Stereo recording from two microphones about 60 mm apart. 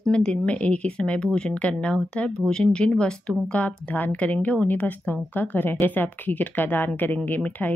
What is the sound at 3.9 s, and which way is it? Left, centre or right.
Speech, left.